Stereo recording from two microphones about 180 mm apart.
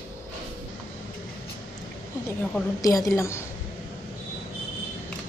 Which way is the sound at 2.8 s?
20° left (ahead or behind).